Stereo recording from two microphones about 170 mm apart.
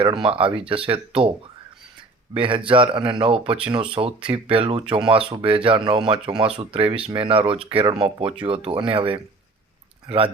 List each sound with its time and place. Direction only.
0.0 s speech: 30° right (ahead or behind)
2.3 s speech: 30° right (ahead or behind)